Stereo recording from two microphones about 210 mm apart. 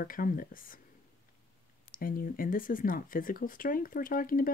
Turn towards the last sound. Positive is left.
turn(degrees=40)  # may be behind; listen again after turning